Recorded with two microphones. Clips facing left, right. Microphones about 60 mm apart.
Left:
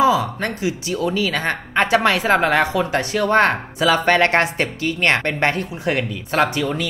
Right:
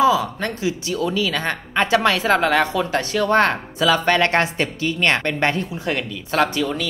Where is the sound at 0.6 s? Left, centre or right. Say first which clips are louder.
Right 1 dB; left.